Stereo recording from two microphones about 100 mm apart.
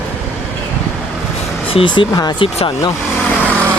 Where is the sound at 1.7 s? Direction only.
60° left (ahead or behind).